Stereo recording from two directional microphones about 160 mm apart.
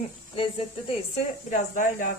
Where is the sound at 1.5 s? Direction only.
55° left (ahead or behind).